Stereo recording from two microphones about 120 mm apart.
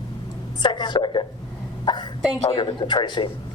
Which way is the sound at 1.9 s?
40° left (ahead or behind).